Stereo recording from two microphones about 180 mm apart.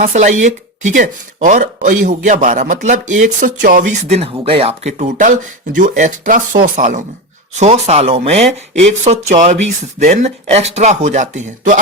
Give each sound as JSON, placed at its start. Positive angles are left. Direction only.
{"t": 0.0, "sound": "speech", "side_deg": -45}